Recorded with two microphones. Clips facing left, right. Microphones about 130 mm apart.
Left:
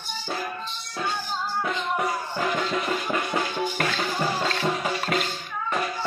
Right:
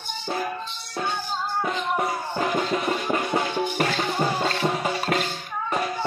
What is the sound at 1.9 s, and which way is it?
Music, 35° right (ahead or behind).